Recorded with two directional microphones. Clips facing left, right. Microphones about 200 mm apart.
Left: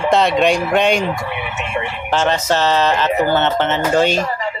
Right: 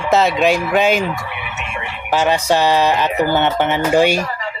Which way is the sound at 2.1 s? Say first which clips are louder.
Right 2 dB; 10° right (ahead or behind).